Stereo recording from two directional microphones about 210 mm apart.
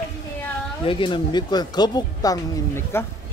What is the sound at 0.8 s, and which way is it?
Speech, 25° left (ahead or behind).